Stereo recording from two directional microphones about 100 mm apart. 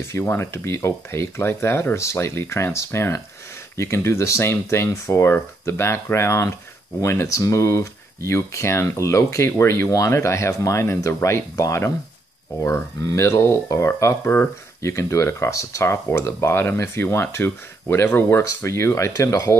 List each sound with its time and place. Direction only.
0.1 s speech: 20° left (ahead or behind)